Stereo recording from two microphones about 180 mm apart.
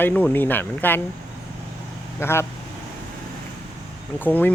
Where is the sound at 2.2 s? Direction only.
15° left (ahead or behind).